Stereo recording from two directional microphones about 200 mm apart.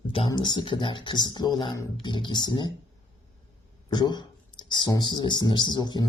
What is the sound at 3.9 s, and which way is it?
Speech, 20° left (ahead or behind).